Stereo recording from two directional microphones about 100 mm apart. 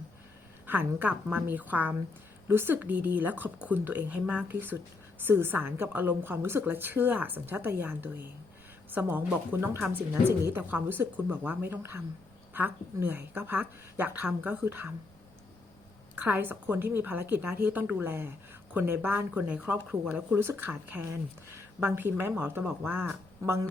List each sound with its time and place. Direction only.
0.7 s a woman's voice: 20° right (ahead or behind)
16.1 s a woman's voice: 20° right (ahead or behind)